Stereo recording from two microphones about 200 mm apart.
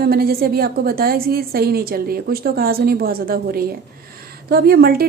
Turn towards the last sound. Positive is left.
turn(degrees=-50)  # may be behind; listen again after turning